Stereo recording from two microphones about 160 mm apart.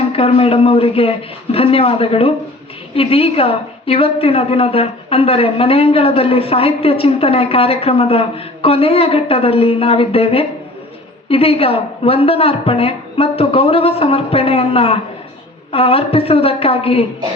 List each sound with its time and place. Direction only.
0.1 s a woman's voice: 35° left (ahead or behind)